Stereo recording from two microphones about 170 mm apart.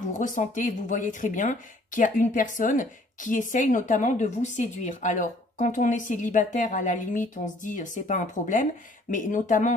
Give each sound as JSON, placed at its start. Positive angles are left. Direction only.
{"t": 0.1, "sound": "speech", "side_deg": 50}